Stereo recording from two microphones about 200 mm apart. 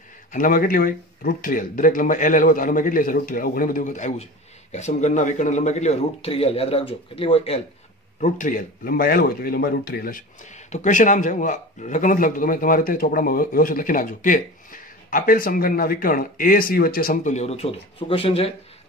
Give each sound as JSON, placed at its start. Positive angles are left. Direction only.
{"t": 0.3, "sound": "a man's voice", "side_deg": 45}
{"t": 8.2, "sound": "speech", "side_deg": 40}